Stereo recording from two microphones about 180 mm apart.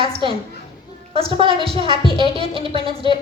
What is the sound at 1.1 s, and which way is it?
A woman's voice, 30° right (ahead or behind).